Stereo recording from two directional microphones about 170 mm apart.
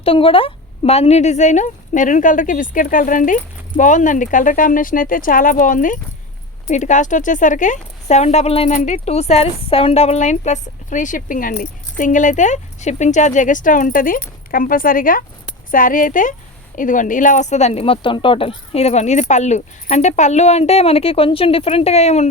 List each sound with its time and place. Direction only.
0.0 s speech: 35° left (ahead or behind)